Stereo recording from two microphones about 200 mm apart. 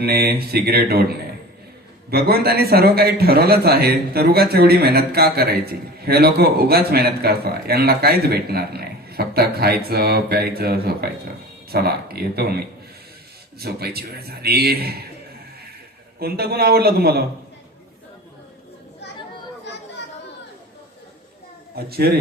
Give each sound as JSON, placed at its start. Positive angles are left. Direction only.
{"t": 0.0, "sound": "a man's voice", "side_deg": -50}
{"t": 2.0, "sound": "a man's voice", "side_deg": -50}
{"t": 16.2, "sound": "a man's voice", "side_deg": -50}
{"t": 21.8, "sound": "a man's voice", "side_deg": -50}